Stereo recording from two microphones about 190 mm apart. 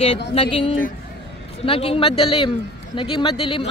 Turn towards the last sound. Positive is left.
turn(degrees=25)  # may be behind; listen again after turning